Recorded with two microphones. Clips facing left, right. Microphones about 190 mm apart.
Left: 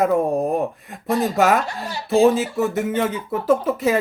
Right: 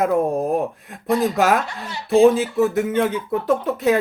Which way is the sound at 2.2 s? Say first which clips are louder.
Right 2 dB; centre (ahead or behind).